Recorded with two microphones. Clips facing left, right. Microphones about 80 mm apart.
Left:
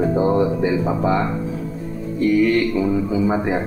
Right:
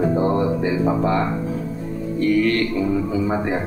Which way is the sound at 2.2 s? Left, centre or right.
Centre.